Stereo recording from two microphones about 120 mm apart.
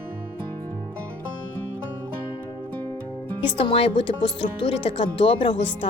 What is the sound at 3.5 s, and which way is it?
Speech, 50° left (ahead or behind).